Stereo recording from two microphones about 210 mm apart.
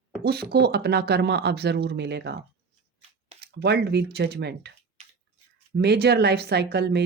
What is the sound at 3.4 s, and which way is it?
Speech, 50° right (ahead or behind).